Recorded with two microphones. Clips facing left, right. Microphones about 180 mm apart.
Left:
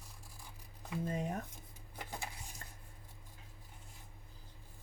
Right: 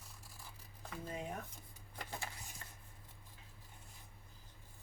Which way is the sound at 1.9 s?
15° left (ahead or behind).